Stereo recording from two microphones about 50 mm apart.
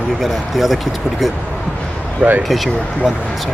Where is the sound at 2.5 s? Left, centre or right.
Centre.